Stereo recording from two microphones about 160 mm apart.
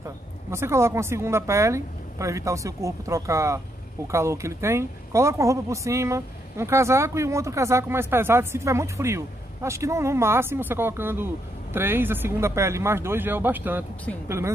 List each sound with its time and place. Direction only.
0.5 s speech: 15° right (ahead or behind)